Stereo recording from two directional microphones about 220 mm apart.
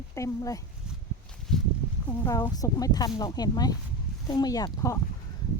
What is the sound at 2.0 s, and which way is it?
A woman's voice, 15° left (ahead or behind).